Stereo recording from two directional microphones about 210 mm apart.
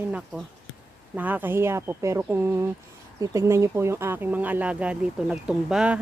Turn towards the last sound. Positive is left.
turn(degrees=-5)  # may be behind; listen again after turning